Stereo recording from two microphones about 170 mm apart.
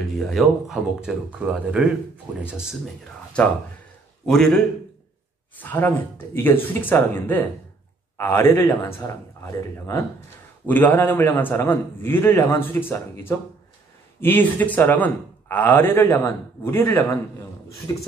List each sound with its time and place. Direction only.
0.2 s speech: centre (ahead or behind)
4.3 s a man's voice: 5° left (ahead or behind)
14.2 s a man's voice: 10° left (ahead or behind)